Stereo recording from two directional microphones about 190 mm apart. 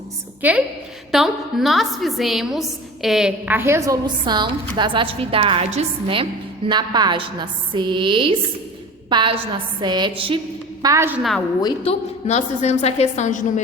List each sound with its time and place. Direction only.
1.1 s a woman's voice: centre (ahead or behind); by 10.4 s 30° right (ahead or behind)
10.8 s a woman's voice: 15° right (ahead or behind)
11.2 s a woman's voice: centre (ahead or behind)
11.6 s a woman's voice: 35° left (ahead or behind)